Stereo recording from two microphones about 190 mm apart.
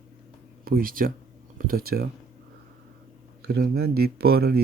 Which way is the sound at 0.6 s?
50° right (ahead or behind).